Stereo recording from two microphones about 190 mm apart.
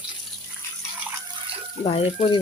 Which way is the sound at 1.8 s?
25° left (ahead or behind).